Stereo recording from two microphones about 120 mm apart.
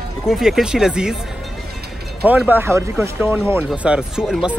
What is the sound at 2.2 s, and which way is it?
Speech, 15° right (ahead or behind).